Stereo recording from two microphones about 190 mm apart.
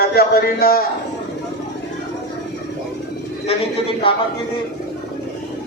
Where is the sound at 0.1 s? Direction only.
55° left (ahead or behind).